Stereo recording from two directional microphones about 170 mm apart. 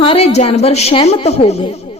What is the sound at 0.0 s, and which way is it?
A man's voice, 35° left (ahead or behind).